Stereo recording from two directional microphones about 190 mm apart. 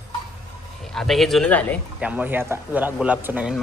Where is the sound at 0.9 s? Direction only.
Centre (ahead or behind).